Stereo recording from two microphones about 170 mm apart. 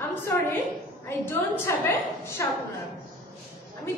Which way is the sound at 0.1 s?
10° left (ahead or behind).